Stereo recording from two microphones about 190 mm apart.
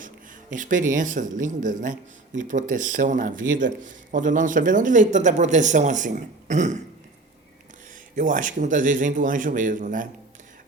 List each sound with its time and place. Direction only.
0.5 s speech: 40° right (ahead or behind)
8.1 s speech: 40° right (ahead or behind)